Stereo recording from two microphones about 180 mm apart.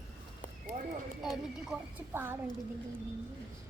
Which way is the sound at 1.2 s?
Centre (ahead or behind).